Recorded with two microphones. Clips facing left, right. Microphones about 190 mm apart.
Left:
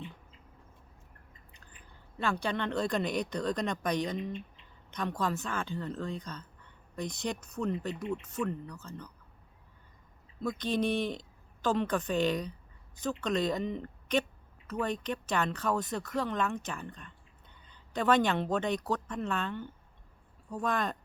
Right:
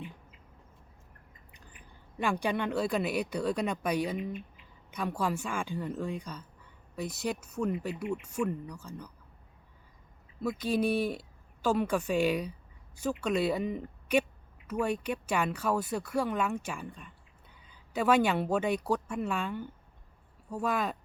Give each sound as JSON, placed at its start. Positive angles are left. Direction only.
{"t": 2.1, "sound": "a woman's voice", "side_deg": -15}
{"t": 10.4, "sound": "a woman's voice", "side_deg": -5}